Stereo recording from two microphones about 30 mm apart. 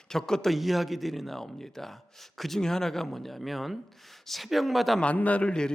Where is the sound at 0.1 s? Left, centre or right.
Centre.